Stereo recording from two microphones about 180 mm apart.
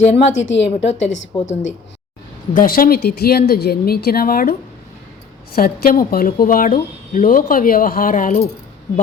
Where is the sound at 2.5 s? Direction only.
50° left (ahead or behind).